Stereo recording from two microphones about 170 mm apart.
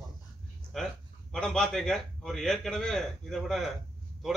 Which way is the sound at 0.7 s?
Centre (ahead or behind).